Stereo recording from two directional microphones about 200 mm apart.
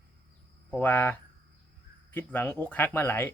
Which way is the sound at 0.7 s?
10° left (ahead or behind).